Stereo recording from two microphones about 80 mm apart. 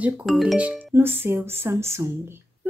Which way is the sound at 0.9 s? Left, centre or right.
Right.